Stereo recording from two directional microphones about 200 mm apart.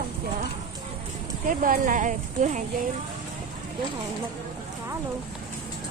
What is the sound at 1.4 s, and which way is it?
Speech, 40° right (ahead or behind).